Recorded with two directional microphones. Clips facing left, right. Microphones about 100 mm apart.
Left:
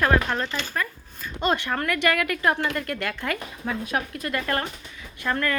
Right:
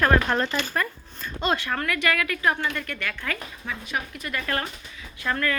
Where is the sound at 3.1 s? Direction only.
25° left (ahead or behind).